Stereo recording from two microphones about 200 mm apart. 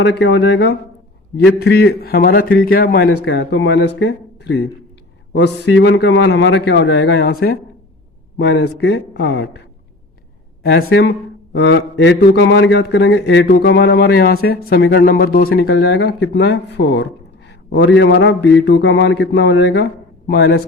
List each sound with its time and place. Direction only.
0.0 s a man's voice: 60° left (ahead or behind)
10.8 s a man's voice: 60° left (ahead or behind)